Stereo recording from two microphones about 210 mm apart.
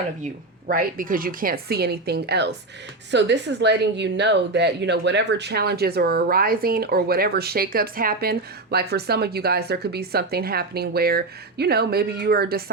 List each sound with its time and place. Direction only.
0.7 s speech: 40° right (ahead or behind)